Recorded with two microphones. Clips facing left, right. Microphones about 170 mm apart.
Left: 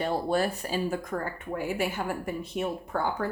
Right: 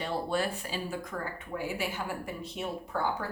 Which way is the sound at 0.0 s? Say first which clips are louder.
Left 4 dB; 40° left (ahead or behind).